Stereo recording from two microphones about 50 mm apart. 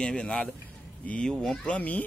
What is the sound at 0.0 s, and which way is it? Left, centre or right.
Speech, centre.